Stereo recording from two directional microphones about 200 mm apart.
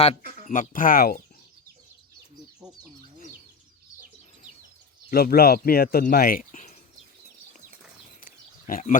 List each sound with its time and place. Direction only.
0.2 s speech: 45° right (ahead or behind)
0.4 s speech: 40° left (ahead or behind)
5.1 s speech: 50° left (ahead or behind)
8.6 s speech: 40° left (ahead or behind)